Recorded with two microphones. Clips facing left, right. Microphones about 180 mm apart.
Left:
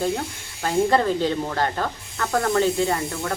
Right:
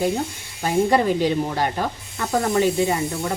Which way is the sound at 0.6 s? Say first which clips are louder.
Right 1 dB; 15° right (ahead or behind).